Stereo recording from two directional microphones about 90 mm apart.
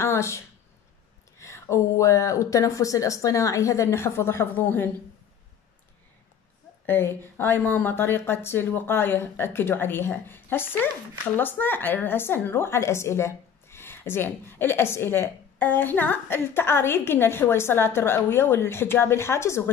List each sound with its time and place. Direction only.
0.0 s a sound: 30° left (ahead or behind)
1.4 s speech: 35° left (ahead or behind)
6.9 s a woman's voice: 25° left (ahead or behind)